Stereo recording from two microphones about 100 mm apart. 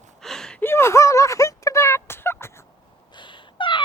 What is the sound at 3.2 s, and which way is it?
Cat, 55° left (ahead or behind).